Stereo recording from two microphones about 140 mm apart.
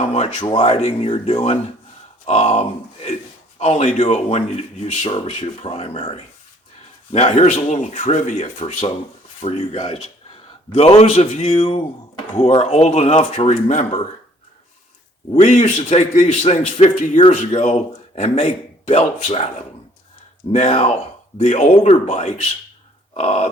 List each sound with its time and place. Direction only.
0.1 s a man's voice: 45° left (ahead or behind)
15.4 s a man's voice: 50° left (ahead or behind)
20.5 s a man's voice: 50° left (ahead or behind)